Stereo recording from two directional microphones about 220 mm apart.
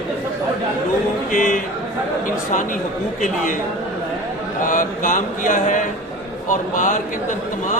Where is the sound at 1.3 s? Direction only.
35° left (ahead or behind).